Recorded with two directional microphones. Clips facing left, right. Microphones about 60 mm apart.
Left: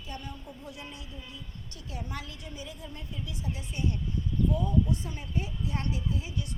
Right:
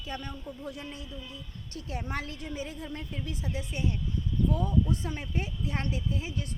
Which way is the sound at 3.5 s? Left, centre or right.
Right.